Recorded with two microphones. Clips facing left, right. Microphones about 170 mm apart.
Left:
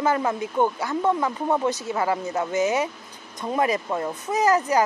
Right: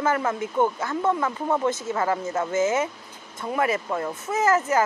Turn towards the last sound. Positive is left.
turn(degrees=15)  # may be behind; listen again after turning